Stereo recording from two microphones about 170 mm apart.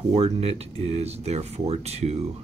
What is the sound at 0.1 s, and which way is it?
Speech, 35° right (ahead or behind).